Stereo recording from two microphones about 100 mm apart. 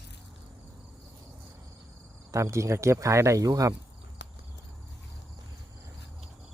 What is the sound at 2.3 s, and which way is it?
Speech, 30° right (ahead or behind).